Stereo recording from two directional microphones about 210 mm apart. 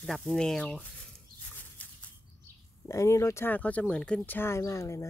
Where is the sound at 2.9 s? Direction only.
15° left (ahead or behind).